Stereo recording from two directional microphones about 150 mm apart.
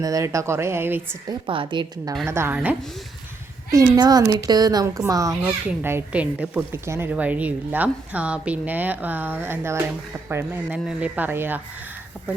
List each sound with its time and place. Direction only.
0.0 s a woman's voice: 20° right (ahead or behind)
1.3 s a woman's voice: 35° right (ahead or behind)
2.2 s a woman's voice: 15° right (ahead or behind)
3.7 s a woman's voice: 25° right (ahead or behind)